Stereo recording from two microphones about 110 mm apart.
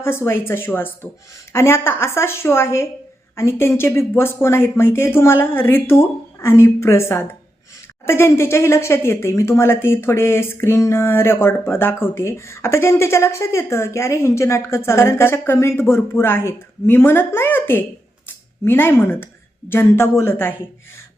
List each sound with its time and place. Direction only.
0.0 s speech: 20° left (ahead or behind)